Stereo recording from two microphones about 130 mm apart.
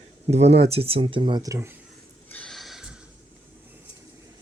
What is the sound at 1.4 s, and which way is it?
Speech, 25° right (ahead or behind).